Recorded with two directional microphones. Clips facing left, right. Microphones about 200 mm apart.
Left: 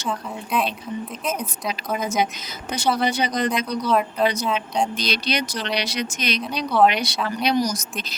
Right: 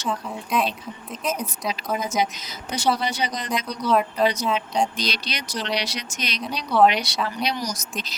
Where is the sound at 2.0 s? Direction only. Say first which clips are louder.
Left 1 dB; 55° left (ahead or behind).